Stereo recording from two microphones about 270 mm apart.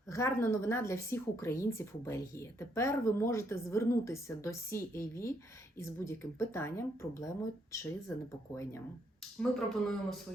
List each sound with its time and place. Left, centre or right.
0.1 s speech: centre
9.4 s speech: centre